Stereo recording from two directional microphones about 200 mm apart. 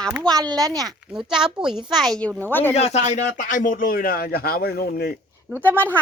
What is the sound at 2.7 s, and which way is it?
A man's voice, 35° left (ahead or behind).